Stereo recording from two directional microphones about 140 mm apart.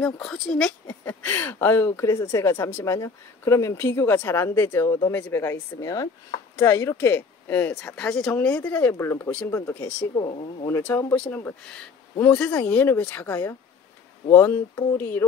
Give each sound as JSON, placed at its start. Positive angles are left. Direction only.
{"t": 0.0, "sound": "speech", "side_deg": 5}
{"t": 10.1, "sound": "speech", "side_deg": 35}
{"t": 10.7, "sound": "speech", "side_deg": 15}